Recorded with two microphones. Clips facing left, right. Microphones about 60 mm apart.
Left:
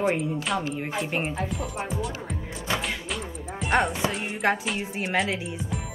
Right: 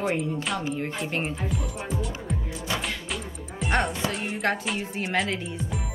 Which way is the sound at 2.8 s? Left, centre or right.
Centre.